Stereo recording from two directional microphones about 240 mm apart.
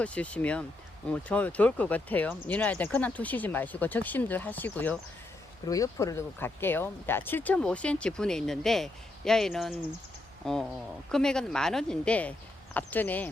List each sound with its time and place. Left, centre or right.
0.0 s speech: centre